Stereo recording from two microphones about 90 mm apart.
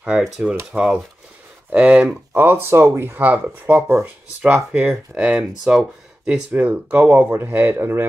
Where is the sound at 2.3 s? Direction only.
25° right (ahead or behind).